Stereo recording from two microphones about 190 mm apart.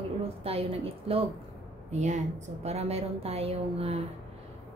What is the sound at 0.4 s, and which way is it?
A woman's voice, 30° right (ahead or behind).